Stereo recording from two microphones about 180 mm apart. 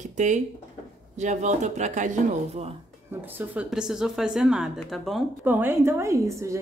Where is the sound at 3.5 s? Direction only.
5° right (ahead or behind).